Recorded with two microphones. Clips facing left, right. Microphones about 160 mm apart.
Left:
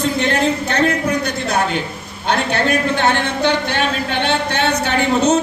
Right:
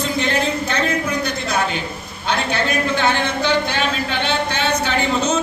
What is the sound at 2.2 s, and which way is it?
Speech, 60° left (ahead or behind).